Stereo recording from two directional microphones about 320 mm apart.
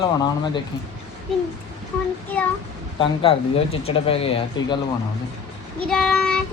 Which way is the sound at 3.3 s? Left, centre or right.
Centre.